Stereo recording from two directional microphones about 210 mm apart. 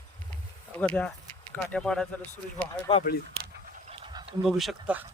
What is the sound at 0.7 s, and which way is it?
Speech, 5° left (ahead or behind).